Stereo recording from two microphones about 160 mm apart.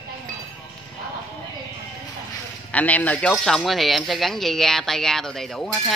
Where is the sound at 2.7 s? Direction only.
10° left (ahead or behind).